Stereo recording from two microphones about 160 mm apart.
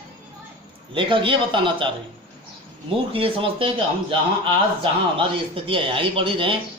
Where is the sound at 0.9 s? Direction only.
30° right (ahead or behind).